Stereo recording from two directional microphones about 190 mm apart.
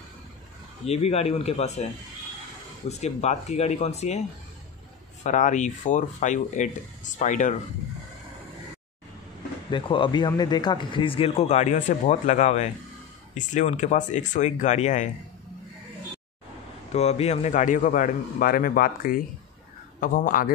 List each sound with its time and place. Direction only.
0.8 s speech: 35° left (ahead or behind)
3.0 s speech: 35° left (ahead or behind)
5.2 s speech: 40° left (ahead or behind)
9.7 s speech: 25° left (ahead or behind)
16.9 s a man's voice: 35° left (ahead or behind)